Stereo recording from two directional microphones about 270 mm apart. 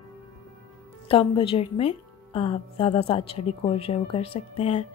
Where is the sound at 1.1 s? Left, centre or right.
Centre.